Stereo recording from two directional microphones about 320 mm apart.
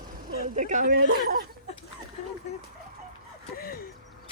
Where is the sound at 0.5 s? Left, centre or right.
Right.